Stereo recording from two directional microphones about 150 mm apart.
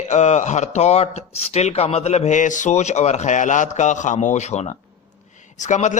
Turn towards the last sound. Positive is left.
turn(degrees=55)  # may be behind; listen again after turning